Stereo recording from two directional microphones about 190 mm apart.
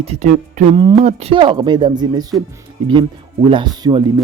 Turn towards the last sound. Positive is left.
turn(degrees=-25)  # may be behind; listen again after turning